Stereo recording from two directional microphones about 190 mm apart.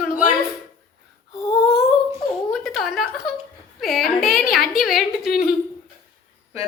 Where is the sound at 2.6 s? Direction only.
Centre (ahead or behind).